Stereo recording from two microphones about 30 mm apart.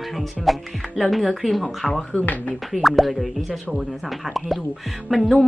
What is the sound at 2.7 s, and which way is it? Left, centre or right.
Speech, centre.